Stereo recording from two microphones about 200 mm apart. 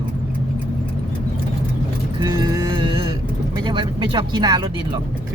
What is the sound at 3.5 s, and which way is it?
Speech, 25° right (ahead or behind).